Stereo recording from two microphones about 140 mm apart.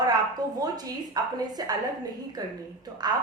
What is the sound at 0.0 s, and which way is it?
A woman's voice, 25° right (ahead or behind).